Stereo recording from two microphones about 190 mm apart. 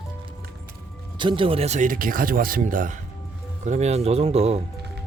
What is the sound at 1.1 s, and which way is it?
Speech, 25° right (ahead or behind).